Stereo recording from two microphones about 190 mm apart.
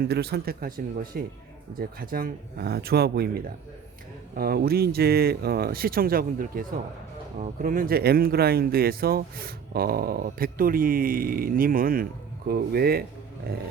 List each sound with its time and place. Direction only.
0.0 s speech: 60° right (ahead or behind)